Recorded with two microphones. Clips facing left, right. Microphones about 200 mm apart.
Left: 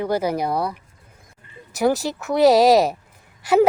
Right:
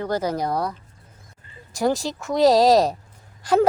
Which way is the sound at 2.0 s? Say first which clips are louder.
Left 1 dB; 5° left (ahead or behind).